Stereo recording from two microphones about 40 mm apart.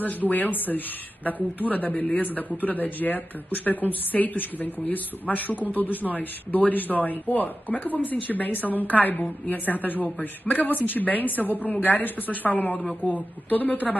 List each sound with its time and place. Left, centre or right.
0.0 s speech: left